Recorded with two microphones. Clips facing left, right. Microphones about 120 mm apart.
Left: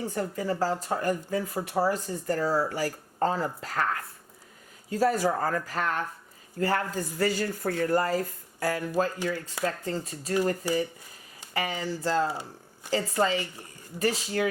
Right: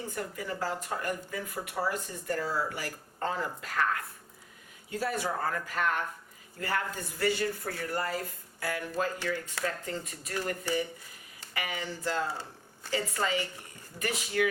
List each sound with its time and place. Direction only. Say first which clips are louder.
0.1 s speech: left 7 dB; 35° left (ahead or behind)
4.9 s speech: left 7 dB; 40° left (ahead or behind)
12.3 s a sound: left 3 dB; 15° left (ahead or behind)
12.9 s speech: left 5 dB; 30° left (ahead or behind)